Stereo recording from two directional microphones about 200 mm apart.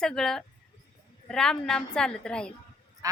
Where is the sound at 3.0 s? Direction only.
15° right (ahead or behind).